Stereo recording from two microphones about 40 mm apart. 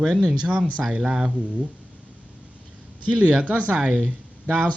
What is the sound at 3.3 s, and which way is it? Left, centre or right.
Speech, right.